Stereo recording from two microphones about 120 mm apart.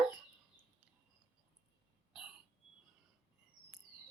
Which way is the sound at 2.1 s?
5° right (ahead or behind).